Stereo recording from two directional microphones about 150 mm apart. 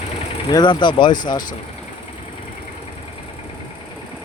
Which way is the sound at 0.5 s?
30° left (ahead or behind).